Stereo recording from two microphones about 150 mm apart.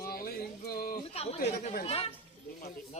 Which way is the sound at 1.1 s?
45° left (ahead or behind).